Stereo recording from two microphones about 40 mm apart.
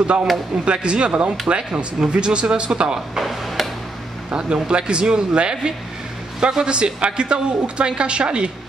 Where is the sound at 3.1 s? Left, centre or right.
Centre.